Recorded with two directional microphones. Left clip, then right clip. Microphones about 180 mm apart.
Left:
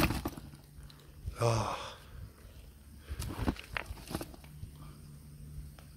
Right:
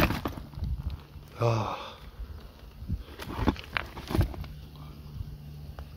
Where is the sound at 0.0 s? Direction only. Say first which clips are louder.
Right 5 dB; 15° right (ahead or behind).